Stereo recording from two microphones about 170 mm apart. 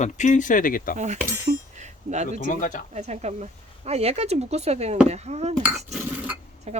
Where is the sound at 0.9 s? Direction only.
45° right (ahead or behind).